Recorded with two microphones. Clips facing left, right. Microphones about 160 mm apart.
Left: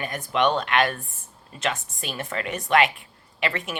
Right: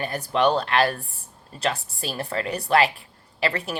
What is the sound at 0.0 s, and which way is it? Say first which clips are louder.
Speech: right 2 dB; 35° right (ahead or behind).